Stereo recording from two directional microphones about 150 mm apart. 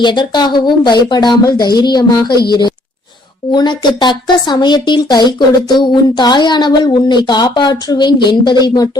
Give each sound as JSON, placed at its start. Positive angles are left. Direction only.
{"t": 0.0, "sound": "speech", "side_deg": 30}